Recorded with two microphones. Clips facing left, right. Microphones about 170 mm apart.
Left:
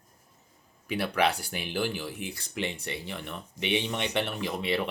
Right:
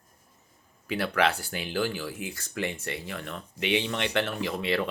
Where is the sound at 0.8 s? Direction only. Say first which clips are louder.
Right 1 dB; 15° left (ahead or behind).